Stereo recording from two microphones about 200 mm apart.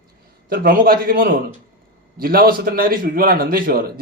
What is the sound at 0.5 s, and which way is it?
A man's voice, 45° right (ahead or behind).